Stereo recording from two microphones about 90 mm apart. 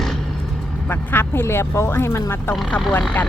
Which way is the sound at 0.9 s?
25° left (ahead or behind).